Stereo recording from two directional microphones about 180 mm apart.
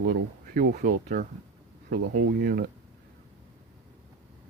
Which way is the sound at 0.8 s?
45° right (ahead or behind).